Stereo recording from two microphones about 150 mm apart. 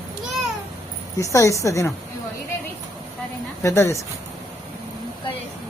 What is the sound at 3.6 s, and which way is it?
Speech, 20° left (ahead or behind).